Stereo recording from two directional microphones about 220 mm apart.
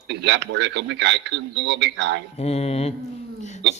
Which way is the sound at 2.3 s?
30° left (ahead or behind).